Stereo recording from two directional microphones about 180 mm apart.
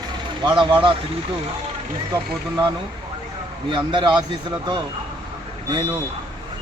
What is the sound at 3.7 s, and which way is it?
Speech, 25° right (ahead or behind).